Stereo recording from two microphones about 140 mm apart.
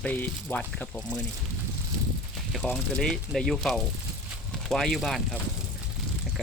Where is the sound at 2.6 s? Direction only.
5° left (ahead or behind).